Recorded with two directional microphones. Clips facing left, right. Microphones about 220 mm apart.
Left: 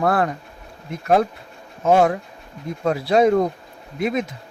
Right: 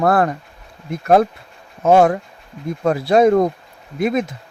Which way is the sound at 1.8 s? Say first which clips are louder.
Right 3 dB; 50° right (ahead or behind).